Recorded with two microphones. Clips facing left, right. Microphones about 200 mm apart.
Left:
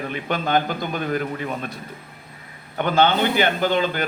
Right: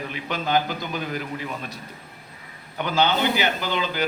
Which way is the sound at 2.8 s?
50° left (ahead or behind).